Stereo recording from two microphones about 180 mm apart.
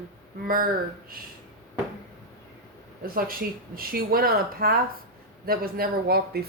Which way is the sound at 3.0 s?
55° right (ahead or behind).